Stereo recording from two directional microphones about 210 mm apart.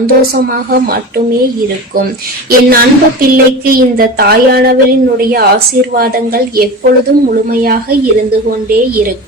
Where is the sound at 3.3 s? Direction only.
45° right (ahead or behind).